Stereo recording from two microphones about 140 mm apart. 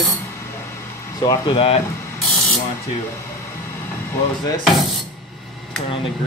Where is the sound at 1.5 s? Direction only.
40° left (ahead or behind).